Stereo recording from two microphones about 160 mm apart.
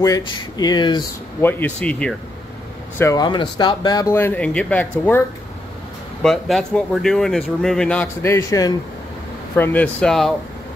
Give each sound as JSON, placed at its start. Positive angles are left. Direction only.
{"t": 0.0, "sound": "speech", "side_deg": 25}
{"t": 1.4, "sound": "speech", "side_deg": 10}
{"t": 3.0, "sound": "speech", "side_deg": 20}
{"t": 4.1, "sound": "speech", "side_deg": 10}
{"t": 6.2, "sound": "a man's voice", "side_deg": 0}
{"t": 9.6, "sound": "speech", "side_deg": 10}